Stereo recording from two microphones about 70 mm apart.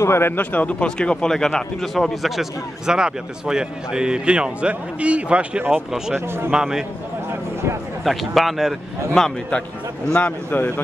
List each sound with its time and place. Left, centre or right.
0.0 s speech: left
0.4 s speech: left; by 2.4 s centre
2.9 s speech: centre
8.0 s speech: centre
10.1 s speech: left